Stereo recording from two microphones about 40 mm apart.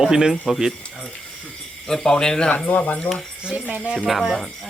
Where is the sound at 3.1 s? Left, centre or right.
Left.